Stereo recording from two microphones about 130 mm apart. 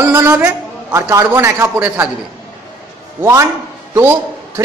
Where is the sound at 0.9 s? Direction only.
20° right (ahead or behind).